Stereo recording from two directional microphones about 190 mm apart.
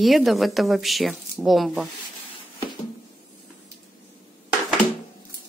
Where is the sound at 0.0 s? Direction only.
Centre (ahead or behind).